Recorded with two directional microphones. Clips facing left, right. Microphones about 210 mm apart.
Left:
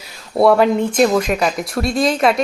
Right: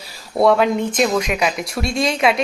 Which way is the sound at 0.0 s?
Centre (ahead or behind).